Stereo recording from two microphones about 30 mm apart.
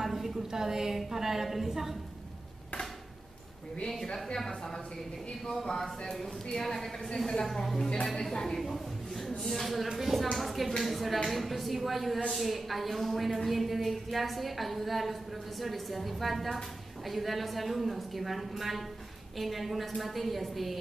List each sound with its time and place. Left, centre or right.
0.0 s a sound: centre
0.5 s a woman's voice: centre
4.0 s speech: centre
6.5 s speech: centre
8.5 s a woman's voice: centre